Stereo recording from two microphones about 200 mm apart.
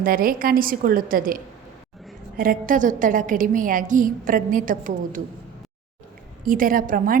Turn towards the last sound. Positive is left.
turn(degrees=-45)  # may be behind; listen again after turning